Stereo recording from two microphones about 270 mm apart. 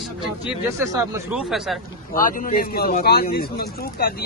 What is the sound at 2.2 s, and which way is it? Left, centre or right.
Speech, left.